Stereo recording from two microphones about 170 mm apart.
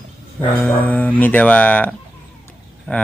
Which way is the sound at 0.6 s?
10° left (ahead or behind).